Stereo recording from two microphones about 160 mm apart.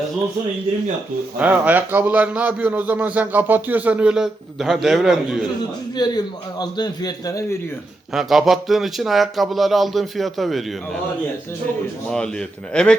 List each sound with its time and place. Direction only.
1.4 s a man's voice: 10° right (ahead or behind)
6.0 s a man's voice: 25° left (ahead or behind)
8.1 s speech: centre (ahead or behind)
12.1 s speech: 5° left (ahead or behind)